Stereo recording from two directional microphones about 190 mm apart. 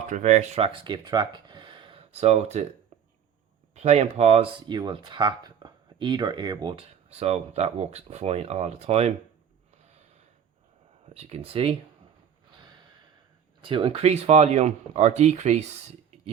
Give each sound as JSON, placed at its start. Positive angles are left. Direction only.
{"t": 0.1, "sound": "speech", "side_deg": -40}
{"t": 3.8, "sound": "speech", "side_deg": -35}
{"t": 11.0, "sound": "speech", "side_deg": -35}
{"t": 13.6, "sound": "speech", "side_deg": -25}